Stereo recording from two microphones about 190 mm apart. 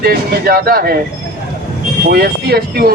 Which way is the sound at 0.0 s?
55° right (ahead or behind).